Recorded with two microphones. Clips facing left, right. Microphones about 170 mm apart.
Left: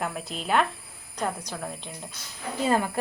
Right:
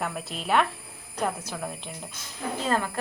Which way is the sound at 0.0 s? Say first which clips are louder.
Even; centre (ahead or behind).